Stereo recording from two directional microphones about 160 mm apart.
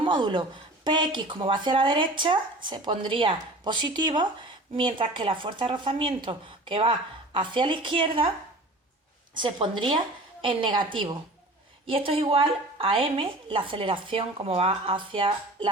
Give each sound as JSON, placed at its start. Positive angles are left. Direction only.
{"t": 0.0, "sound": "speech", "side_deg": -30}
{"t": 9.4, "sound": "speech", "side_deg": -30}